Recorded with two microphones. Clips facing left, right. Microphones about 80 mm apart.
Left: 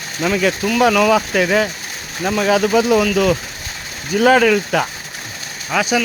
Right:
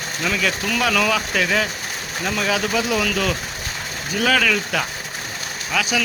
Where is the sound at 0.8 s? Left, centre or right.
Left.